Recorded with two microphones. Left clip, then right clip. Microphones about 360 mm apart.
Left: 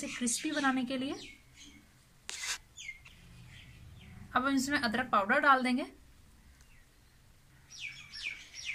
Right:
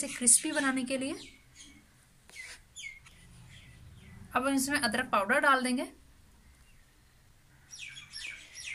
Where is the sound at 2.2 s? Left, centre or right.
Left.